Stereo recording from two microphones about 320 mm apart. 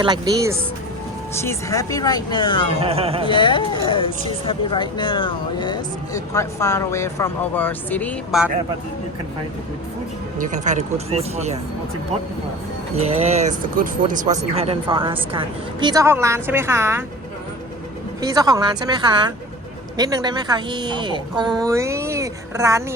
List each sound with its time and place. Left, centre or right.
0.0 s a woman's voice: centre
1.4 s speech: centre
2.8 s a woman's voice: centre
3.2 s speech: centre
10.3 s speech: right
13.2 s a woman's voice: right
18.2 s a woman's voice: centre